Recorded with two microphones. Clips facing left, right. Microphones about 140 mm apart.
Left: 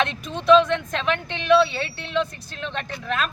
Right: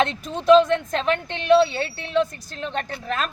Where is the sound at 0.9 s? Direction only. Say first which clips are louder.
Right 2 dB; 40° right (ahead or behind).